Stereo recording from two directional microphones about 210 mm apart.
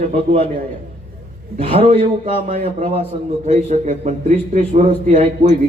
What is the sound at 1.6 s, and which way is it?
A man's voice, 25° right (ahead or behind).